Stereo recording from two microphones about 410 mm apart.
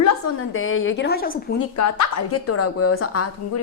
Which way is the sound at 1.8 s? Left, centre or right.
Left.